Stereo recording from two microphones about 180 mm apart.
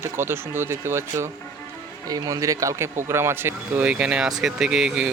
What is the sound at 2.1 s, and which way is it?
Speech, 20° right (ahead or behind).